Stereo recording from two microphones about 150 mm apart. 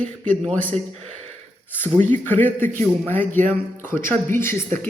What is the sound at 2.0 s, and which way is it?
Speech, 55° right (ahead or behind).